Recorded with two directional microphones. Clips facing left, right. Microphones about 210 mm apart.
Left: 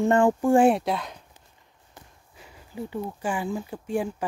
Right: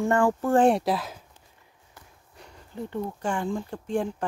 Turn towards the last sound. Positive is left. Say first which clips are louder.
# even
turn(degrees=5)  # may be behind; listen again after turning